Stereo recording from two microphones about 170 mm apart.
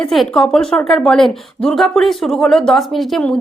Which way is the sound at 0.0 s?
Centre (ahead or behind).